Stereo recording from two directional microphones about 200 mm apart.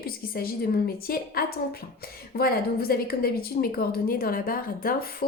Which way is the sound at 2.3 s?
50° left (ahead or behind).